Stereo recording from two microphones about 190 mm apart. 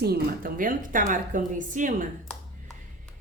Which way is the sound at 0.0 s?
50° right (ahead or behind).